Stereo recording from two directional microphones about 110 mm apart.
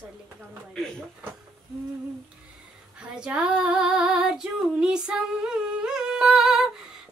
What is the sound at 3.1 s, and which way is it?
Female singing, 10° right (ahead or behind).